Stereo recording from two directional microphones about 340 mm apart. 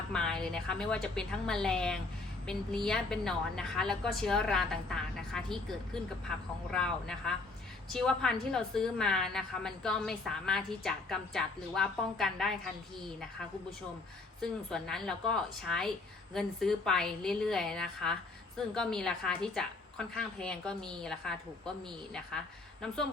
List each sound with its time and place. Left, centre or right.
0.1 s a woman's voice: centre
14.4 s a woman's voice: centre